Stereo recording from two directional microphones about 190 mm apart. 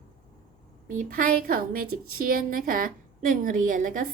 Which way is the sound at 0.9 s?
50° right (ahead or behind).